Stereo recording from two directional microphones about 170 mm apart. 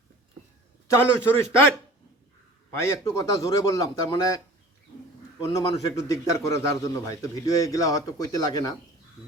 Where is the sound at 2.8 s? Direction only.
15° left (ahead or behind).